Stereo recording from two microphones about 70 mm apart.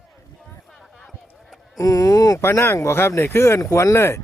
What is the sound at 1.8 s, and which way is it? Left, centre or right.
Speech, left.